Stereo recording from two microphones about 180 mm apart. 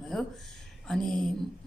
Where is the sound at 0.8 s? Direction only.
Centre (ahead or behind).